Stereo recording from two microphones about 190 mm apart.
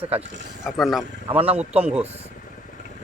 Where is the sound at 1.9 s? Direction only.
10° right (ahead or behind).